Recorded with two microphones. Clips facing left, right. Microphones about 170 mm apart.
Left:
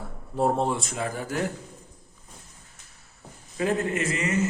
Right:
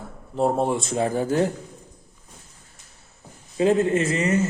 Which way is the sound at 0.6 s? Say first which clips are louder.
Right 5 dB; 20° right (ahead or behind).